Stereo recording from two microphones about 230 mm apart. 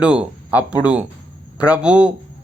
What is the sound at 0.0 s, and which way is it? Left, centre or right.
Speech, centre.